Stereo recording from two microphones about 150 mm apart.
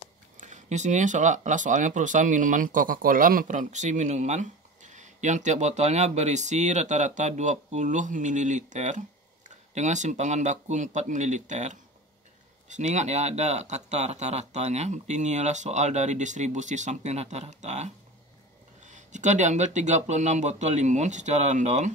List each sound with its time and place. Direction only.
0.4 s speech: 55° right (ahead or behind)